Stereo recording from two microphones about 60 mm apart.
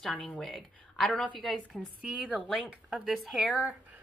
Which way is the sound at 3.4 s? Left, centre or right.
Centre.